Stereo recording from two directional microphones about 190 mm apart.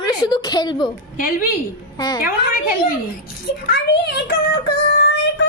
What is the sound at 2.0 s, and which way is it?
Speech, 20° left (ahead or behind).